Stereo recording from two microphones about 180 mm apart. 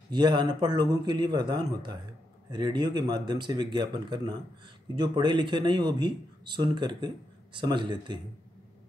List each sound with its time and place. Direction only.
0.1 s speech: 25° right (ahead or behind)